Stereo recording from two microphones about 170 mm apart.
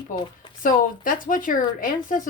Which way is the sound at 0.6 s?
55° left (ahead or behind).